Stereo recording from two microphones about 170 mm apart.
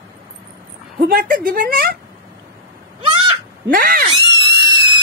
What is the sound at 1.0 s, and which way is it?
Speech, 60° right (ahead or behind).